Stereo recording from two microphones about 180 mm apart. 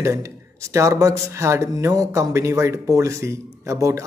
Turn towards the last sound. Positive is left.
turn(degrees=-15)  # may be behind; listen again after turning